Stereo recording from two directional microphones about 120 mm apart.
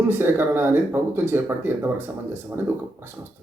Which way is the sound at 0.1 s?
20° right (ahead or behind).